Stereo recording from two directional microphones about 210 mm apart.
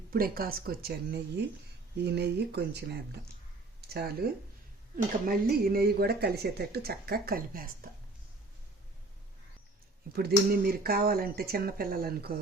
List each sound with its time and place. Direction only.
0.1 s a woman's voice: 45° right (ahead or behind)
10.1 s a woman's voice: 50° right (ahead or behind)